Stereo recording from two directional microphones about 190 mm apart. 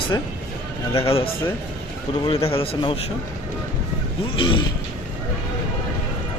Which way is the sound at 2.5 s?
30° left (ahead or behind).